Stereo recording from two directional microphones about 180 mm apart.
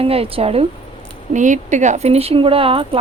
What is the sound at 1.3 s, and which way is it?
Speech, 45° right (ahead or behind).